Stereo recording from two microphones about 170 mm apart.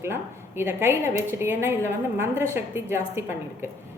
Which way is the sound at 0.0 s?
15° right (ahead or behind).